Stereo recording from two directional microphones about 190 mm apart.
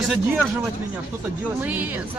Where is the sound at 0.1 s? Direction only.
10° right (ahead or behind).